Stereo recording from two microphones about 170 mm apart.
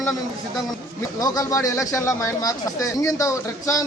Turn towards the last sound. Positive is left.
turn(degrees=20)  # may be behind; listen again after turning